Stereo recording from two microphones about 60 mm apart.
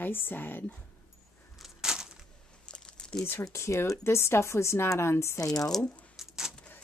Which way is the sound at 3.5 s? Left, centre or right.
Left.